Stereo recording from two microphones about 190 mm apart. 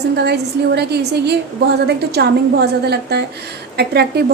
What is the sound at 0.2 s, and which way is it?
A woman's voice, 60° right (ahead or behind).